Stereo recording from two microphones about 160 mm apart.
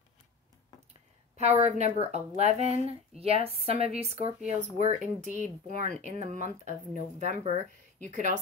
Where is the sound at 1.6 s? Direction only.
45° right (ahead or behind).